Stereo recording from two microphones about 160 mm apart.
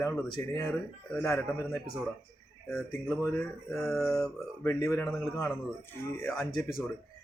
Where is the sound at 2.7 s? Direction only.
Centre (ahead or behind).